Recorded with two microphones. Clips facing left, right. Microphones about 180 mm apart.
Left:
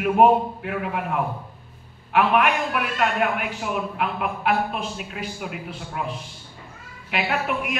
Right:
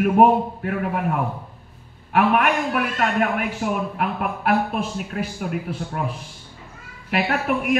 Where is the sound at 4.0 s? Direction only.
50° right (ahead or behind).